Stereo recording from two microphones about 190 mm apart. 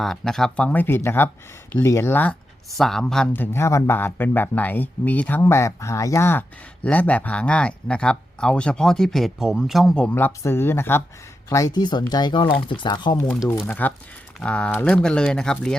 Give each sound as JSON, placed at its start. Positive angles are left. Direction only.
{"t": 0.0, "sound": "speech", "side_deg": 0}
{"t": 13.5, "sound": "speech", "side_deg": 10}